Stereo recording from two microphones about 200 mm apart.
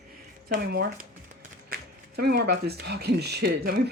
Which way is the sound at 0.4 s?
50° right (ahead or behind).